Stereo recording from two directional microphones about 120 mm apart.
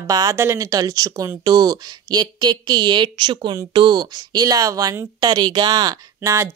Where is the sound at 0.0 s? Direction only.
30° right (ahead or behind).